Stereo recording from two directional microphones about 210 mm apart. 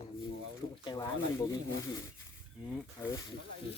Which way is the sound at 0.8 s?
20° left (ahead or behind).